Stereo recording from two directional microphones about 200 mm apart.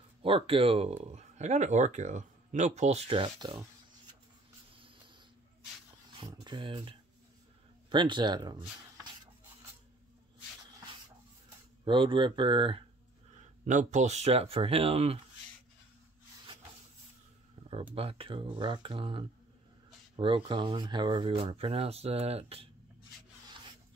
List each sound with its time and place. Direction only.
0.2 s speech: 25° right (ahead or behind)
6.1 s a sound: 25° right (ahead or behind)
7.9 s speech: 25° right (ahead or behind)
11.8 s speech: 25° right (ahead or behind)
13.7 s speech: 40° right (ahead or behind)
17.6 s a sound: 30° right (ahead or behind)
17.9 s speech: 30° right (ahead or behind)